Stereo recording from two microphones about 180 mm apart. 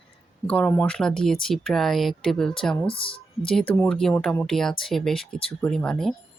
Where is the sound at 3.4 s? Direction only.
5° left (ahead or behind).